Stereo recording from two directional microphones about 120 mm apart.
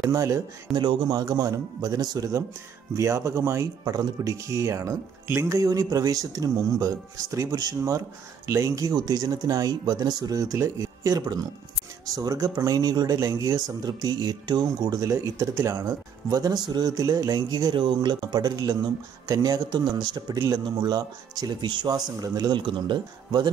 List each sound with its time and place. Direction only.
0.1 s speech: 25° right (ahead or behind)